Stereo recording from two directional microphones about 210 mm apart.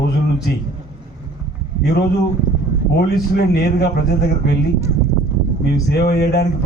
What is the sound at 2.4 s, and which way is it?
Speech, 40° right (ahead or behind).